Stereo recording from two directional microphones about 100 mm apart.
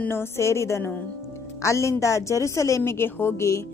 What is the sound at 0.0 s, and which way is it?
A woman's voice, 25° left (ahead or behind).